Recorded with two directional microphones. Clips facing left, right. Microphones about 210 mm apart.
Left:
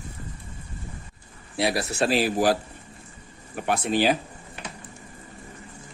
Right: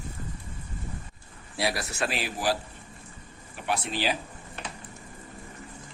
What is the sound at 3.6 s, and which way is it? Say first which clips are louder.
Speech: left 7 dB; 50° left (ahead or behind).